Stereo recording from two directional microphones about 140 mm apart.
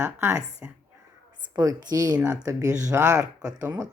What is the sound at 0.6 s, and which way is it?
Speech, 10° right (ahead or behind).